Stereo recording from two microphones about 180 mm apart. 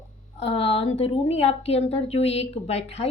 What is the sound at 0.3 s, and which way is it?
Speech, 35° left (ahead or behind).